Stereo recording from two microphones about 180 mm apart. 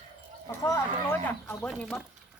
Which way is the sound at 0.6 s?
15° left (ahead or behind).